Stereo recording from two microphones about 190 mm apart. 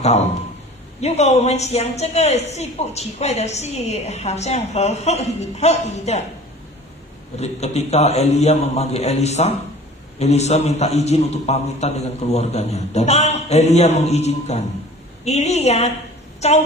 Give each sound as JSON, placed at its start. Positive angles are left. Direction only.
{"t": 1.0, "sound": "a man's voice", "side_deg": 35}
{"t": 7.3, "sound": "a man's voice", "side_deg": 35}